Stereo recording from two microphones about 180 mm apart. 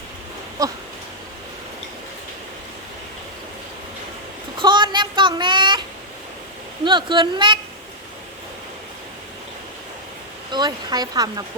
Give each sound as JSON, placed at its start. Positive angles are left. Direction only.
{"t": 0.6, "sound": "speech", "side_deg": -20}
{"t": 4.6, "sound": "a sound", "side_deg": -25}
{"t": 6.8, "sound": "speech", "side_deg": -25}
{"t": 10.5, "sound": "speech", "side_deg": -25}